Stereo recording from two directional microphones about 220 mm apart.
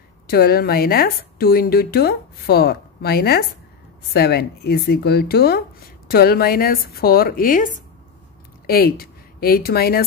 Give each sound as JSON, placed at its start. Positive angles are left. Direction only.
{"t": 0.3, "sound": "a woman's voice", "side_deg": 45}